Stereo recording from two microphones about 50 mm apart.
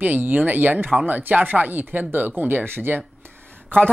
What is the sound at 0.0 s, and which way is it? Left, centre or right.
Speech, right.